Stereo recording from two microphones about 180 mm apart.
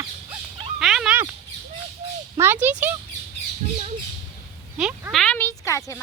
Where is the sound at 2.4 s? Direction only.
10° right (ahead or behind).